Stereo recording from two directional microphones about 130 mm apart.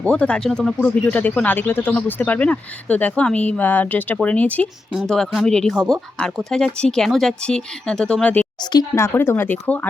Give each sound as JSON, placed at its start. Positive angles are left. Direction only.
{"t": 0.0, "sound": "speech", "side_deg": 10}